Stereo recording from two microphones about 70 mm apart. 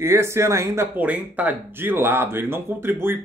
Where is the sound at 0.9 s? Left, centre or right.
Right.